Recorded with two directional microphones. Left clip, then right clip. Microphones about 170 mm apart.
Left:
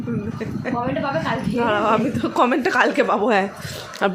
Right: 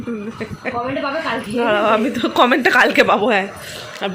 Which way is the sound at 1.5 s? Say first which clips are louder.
Right 4 dB; centre (ahead or behind).